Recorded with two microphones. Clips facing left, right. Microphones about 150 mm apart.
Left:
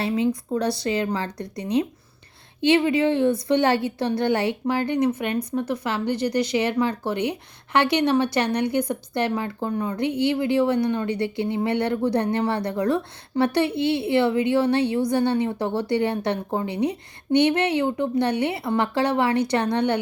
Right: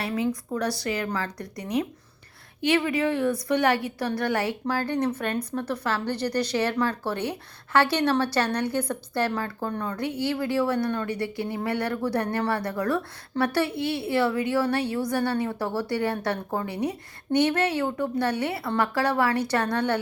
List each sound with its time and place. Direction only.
0.0 s a woman's voice: 25° left (ahead or behind)